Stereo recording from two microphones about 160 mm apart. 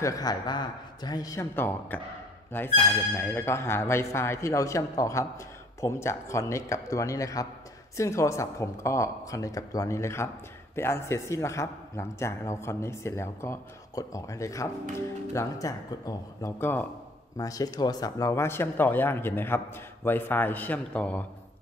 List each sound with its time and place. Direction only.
0.0 s a man's voice: 20° left (ahead or behind)